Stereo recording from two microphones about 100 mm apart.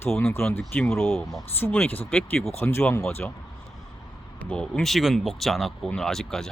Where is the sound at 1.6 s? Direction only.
20° left (ahead or behind).